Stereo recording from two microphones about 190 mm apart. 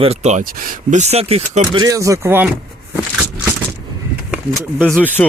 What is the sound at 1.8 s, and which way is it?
Speech, 15° right (ahead or behind).